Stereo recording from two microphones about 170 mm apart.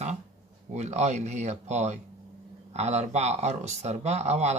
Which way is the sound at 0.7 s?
40° right (ahead or behind).